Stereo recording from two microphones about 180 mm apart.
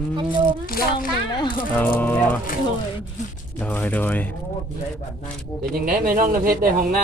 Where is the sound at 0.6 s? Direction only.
55° left (ahead or behind).